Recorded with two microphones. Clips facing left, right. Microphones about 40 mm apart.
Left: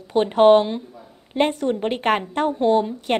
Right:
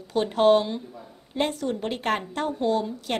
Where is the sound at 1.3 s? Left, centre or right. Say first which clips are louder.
Left 6 dB; left.